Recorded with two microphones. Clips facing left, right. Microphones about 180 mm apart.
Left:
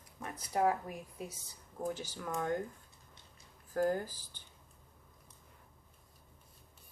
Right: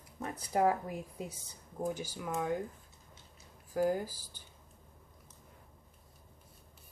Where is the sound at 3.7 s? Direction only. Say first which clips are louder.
Right 1 dB; 10° right (ahead or behind).